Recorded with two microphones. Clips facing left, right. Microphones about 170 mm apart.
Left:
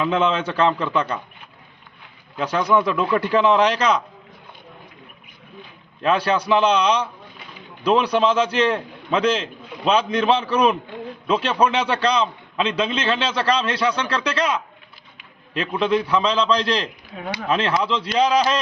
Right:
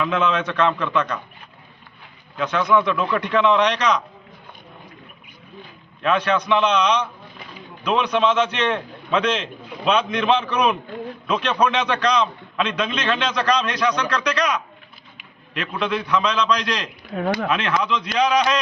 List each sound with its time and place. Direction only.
0.0 s a man's voice: 30° left (ahead or behind)
2.4 s a man's voice: 35° left (ahead or behind)
6.0 s a man's voice: 35° left (ahead or behind)
17.2 s speech: 50° right (ahead or behind)
17.5 s a man's voice: 30° left (ahead or behind)